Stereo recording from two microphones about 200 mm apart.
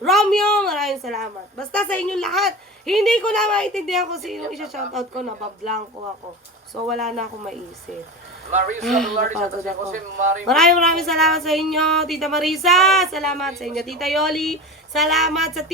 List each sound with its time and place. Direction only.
0.0 s a woman's voice: centre (ahead or behind)
6.8 s speech: centre (ahead or behind)
8.4 s a man's voice: 40° right (ahead or behind)
8.8 s speech: centre (ahead or behind)
9.1 s a man's voice: 45° right (ahead or behind)
10.5 s speech: centre (ahead or behind)